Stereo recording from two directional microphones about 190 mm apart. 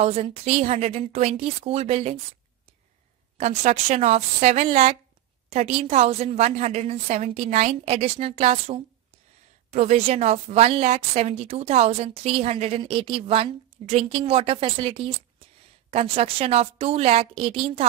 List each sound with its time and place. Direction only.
0.0 s a woman's voice: 35° right (ahead or behind)
3.3 s a woman's voice: 35° right (ahead or behind)